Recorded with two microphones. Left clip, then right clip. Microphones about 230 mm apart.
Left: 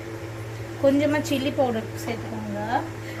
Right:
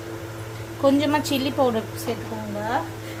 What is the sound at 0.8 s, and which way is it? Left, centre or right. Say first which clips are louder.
Speech: right 1 dB; right.